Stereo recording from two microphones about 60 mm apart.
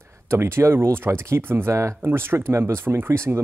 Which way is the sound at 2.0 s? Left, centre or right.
Right.